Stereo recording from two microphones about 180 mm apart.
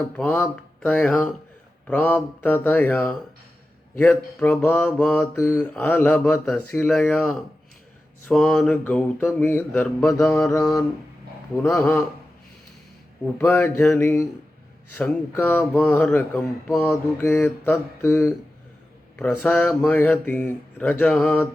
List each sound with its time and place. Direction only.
0.2 s speech: 10° left (ahead or behind)
10.2 s speech: 15° left (ahead or behind)
13.2 s speech: 10° left (ahead or behind)